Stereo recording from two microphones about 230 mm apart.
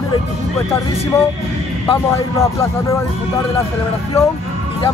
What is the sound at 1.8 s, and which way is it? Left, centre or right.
Speech, centre.